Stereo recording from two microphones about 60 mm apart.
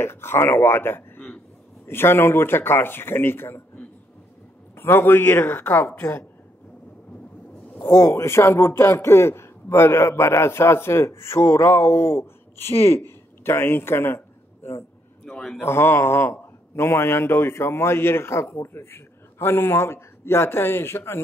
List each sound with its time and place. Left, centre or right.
0.0 s speech: left
4.7 s speech: left
7.8 s a man's voice: left